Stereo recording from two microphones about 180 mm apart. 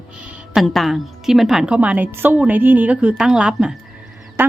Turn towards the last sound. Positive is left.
turn(degrees=-10)  # may be behind; listen again after turning